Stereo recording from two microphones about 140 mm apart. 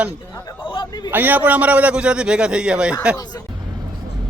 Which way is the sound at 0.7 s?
30° left (ahead or behind).